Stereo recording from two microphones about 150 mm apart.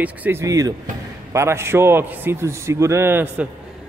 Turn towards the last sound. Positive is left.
turn(degrees=-15)  # may be behind; listen again after turning